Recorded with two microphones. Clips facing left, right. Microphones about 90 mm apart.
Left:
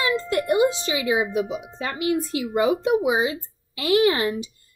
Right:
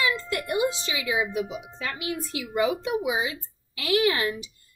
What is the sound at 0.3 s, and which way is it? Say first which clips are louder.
Speech: left 6 dB; 30° left (ahead or behind).